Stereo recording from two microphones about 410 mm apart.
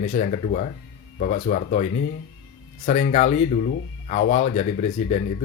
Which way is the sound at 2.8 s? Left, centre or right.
Centre.